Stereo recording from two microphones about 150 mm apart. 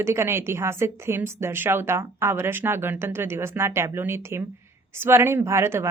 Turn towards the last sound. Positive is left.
turn(degrees=-15)  # may be behind; listen again after turning